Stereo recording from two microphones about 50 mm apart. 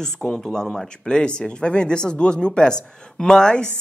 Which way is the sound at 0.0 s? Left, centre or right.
Centre.